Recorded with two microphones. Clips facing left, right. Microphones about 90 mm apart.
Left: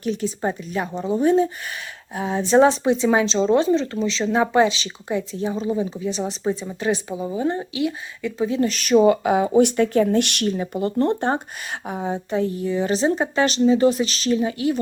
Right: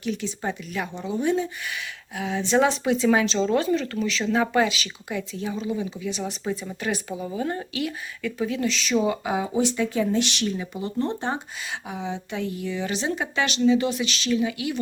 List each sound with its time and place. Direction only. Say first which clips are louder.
0.0 s a woman's voice: left 5 dB; 40° left (ahead or behind)
6.4 s speech: left 7 dB; 20° left (ahead or behind)
8.6 s speech: left 9 dB; 50° left (ahead or behind)
10.8 s speech: left 8 dB; 55° left (ahead or behind)
11.9 s a woman's voice: left 7 dB; 45° left (ahead or behind)